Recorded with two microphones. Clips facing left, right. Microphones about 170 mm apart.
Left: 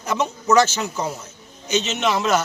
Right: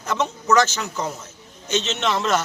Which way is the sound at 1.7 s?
10° left (ahead or behind).